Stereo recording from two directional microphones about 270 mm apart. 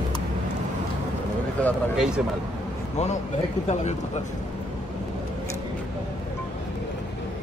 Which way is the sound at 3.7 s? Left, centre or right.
Left.